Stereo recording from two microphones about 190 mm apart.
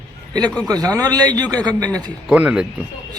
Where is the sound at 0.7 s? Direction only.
20° right (ahead or behind).